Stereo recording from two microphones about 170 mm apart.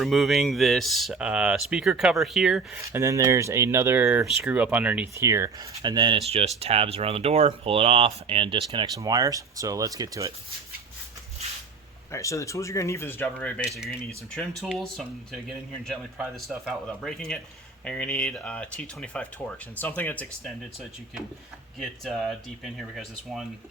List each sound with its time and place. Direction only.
0.0 s speech: centre (ahead or behind)
2.9 s speech: 15° right (ahead or behind)
12.1 s speech: 20° left (ahead or behind)
13.7 s speech: centre (ahead or behind)
21.8 s speech: centre (ahead or behind)